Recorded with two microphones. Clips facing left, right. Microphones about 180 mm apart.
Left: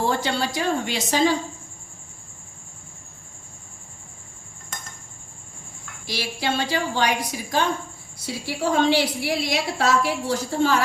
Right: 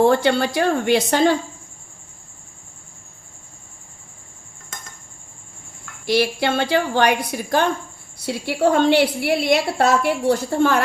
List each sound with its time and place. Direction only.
0.0 s a woman's voice: 60° right (ahead or behind)
6.1 s a woman's voice: 60° right (ahead or behind)